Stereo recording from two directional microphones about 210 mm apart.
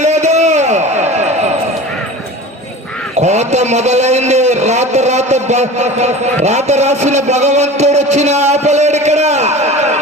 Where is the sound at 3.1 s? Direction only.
30° right (ahead or behind).